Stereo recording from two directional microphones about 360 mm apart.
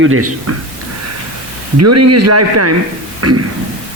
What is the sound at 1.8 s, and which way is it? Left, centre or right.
A man's voice, right.